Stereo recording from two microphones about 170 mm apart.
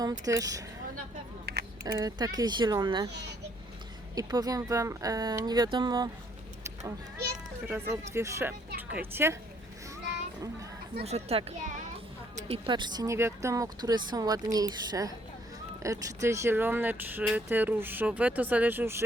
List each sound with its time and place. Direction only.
0.0 s speech: 20° right (ahead or behind)
1.8 s speech: 25° right (ahead or behind)
4.1 s speech: 20° right (ahead or behind)
7.7 s speech: 15° right (ahead or behind)
11.0 s a child's voice: 35° right (ahead or behind)
12.6 s speech: 25° right (ahead or behind)